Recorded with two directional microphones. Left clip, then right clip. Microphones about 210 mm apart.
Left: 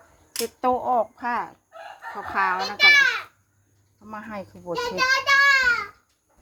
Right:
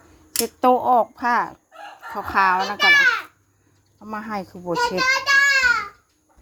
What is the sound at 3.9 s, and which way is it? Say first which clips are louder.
Speech: right 6 dB; 35° right (ahead or behind).